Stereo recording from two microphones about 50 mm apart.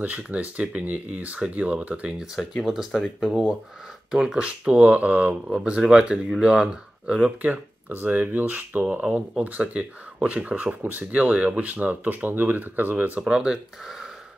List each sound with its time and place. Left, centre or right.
0.2 s speech: right
2.5 s speech: centre
4.1 s speech: centre; by 5.3 s right
5.3 s speech: centre
7.4 s speech: right
9.0 s speech: right
13.3 s speech: centre